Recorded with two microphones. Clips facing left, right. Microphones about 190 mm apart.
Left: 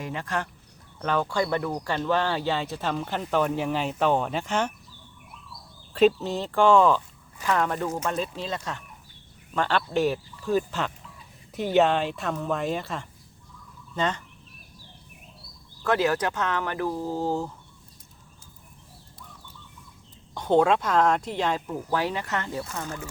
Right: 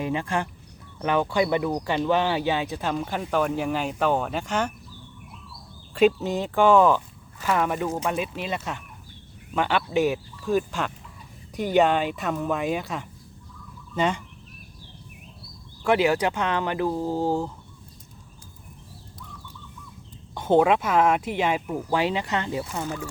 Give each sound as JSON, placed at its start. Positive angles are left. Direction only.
{"t": 0.1, "sound": "speech", "side_deg": -15}
{"t": 5.9, "sound": "speech", "side_deg": -5}
{"t": 9.9, "sound": "speech", "side_deg": 0}
{"t": 15.8, "sound": "speech", "side_deg": -15}
{"t": 20.3, "sound": "speech", "side_deg": -10}